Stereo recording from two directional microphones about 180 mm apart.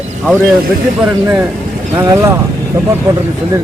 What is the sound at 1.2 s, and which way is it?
A man's voice, 5° right (ahead or behind).